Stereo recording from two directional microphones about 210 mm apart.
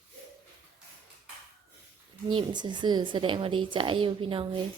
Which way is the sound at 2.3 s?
20° right (ahead or behind).